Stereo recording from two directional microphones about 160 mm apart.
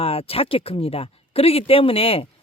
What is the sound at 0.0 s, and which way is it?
Speech, 35° left (ahead or behind).